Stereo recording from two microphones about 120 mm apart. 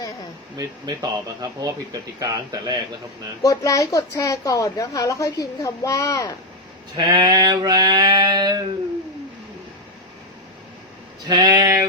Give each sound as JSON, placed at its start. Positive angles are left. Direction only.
{"t": 0.5, "sound": "speech", "side_deg": -35}
{"t": 3.4, "sound": "a woman's voice", "side_deg": 30}
{"t": 6.9, "sound": "speech", "side_deg": -35}
{"t": 11.3, "sound": "speech", "side_deg": -35}